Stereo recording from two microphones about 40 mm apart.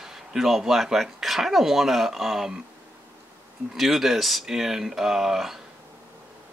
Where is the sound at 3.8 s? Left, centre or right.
Centre.